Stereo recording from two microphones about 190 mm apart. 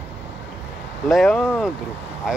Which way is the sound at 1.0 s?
Centre (ahead or behind).